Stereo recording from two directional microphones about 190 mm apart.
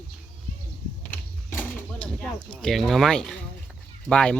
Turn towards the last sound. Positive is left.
turn(degrees=5)  # may be behind; listen again after turning